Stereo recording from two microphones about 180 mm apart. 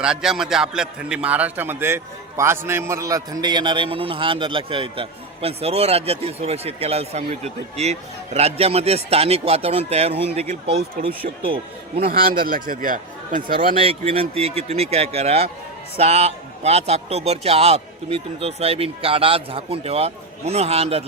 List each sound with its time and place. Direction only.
0.0 s a man's voice: 5° right (ahead or behind); by 10.4 s 35° right (ahead or behind)
11.1 s speech: 55° right (ahead or behind)
13.7 s a man's voice: 35° right (ahead or behind)